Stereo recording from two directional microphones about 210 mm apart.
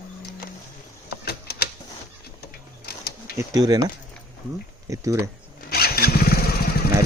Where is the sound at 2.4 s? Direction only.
50° left (ahead or behind).